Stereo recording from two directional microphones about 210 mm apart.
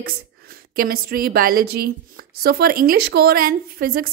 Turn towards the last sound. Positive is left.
turn(degrees=-45)  # may be behind; listen again after turning